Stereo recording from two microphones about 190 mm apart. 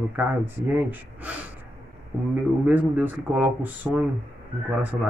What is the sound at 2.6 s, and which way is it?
Speech, 10° right (ahead or behind).